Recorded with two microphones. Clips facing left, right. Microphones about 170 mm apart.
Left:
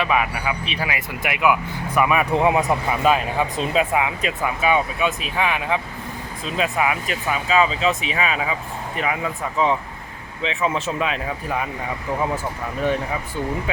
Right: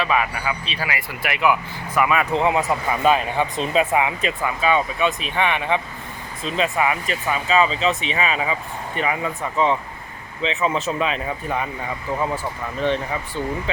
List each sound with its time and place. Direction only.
0.0 s speech: 15° left (ahead or behind)
3.0 s speech: 5° left (ahead or behind)